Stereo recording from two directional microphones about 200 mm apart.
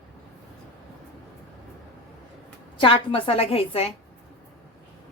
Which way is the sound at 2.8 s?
25° left (ahead or behind).